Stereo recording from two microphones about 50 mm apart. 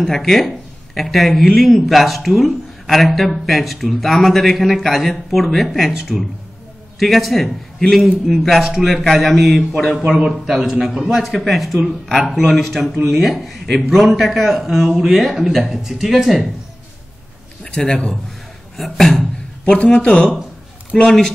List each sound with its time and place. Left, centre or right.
0.0 s speech: centre
10.1 s speech: centre
17.7 s a man's voice: centre
18.8 s speech: centre
19.6 s a man's voice: left